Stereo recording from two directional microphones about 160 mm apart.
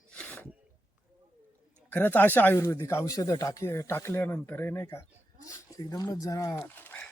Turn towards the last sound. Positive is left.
turn(degrees=10)  # may be behind; listen again after turning